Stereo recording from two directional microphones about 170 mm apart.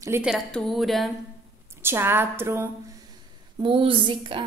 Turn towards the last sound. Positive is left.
turn(degrees=-30)  # may be behind; listen again after turning